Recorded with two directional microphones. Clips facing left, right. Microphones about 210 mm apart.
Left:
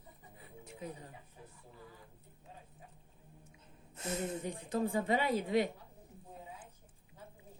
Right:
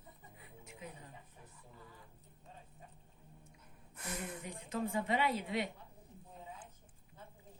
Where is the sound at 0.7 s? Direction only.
35° left (ahead or behind).